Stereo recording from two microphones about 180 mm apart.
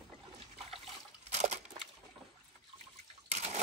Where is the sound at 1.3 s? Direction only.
40° right (ahead or behind).